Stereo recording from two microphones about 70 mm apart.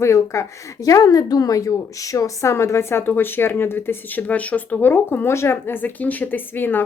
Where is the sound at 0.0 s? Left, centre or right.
Left.